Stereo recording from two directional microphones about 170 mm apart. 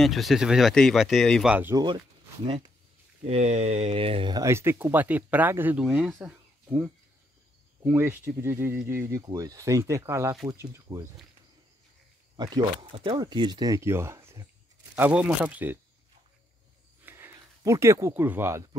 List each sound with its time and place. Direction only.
0.0 s speech: centre (ahead or behind)
3.3 s speech: 40° right (ahead or behind)
4.4 s speech: 15° right (ahead or behind)
12.4 s speech: 25° right (ahead or behind)
17.0 s a sound: 15° right (ahead or behind)